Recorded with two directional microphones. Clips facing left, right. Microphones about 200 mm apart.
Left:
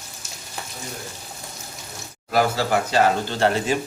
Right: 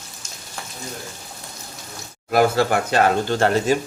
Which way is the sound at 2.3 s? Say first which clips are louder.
Right 3 dB; 55° right (ahead or behind).